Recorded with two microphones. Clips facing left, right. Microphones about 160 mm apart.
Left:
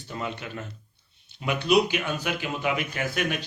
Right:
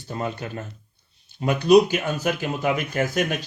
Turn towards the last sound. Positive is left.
turn(degrees=-45)  # may be behind; listen again after turning